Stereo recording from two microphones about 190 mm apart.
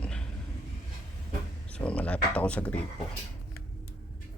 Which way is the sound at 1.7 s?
5° left (ahead or behind).